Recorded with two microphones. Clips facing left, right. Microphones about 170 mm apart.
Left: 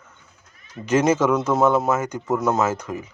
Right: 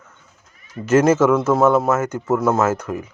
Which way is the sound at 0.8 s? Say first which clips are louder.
Right 4 dB; 5° right (ahead or behind).